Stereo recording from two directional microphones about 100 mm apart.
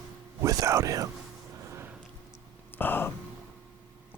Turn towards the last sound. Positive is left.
turn(degrees=20)  # may be behind; listen again after turning